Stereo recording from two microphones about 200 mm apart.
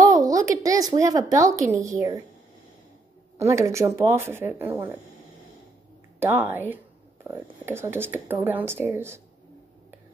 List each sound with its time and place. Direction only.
0.0 s speech: 15° right (ahead or behind)
3.3 s speech: 15° right (ahead or behind)
6.1 s speech: 10° right (ahead or behind)